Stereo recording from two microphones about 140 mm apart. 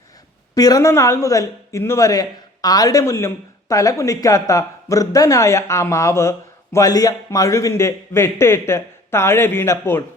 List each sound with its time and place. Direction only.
0.5 s speech: 25° left (ahead or behind)